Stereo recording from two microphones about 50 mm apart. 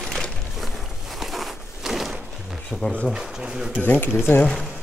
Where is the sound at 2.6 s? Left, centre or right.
Centre.